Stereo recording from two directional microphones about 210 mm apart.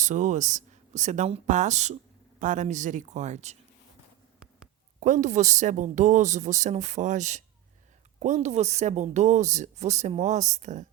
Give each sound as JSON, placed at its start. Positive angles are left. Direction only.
{"t": 0.0, "sound": "speech", "side_deg": -35}
{"t": 4.9, "sound": "speech", "side_deg": -35}